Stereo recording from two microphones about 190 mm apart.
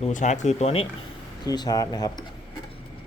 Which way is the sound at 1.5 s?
20° left (ahead or behind).